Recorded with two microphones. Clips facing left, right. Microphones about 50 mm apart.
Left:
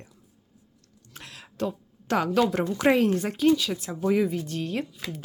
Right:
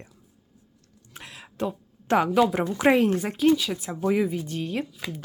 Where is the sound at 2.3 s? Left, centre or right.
Centre.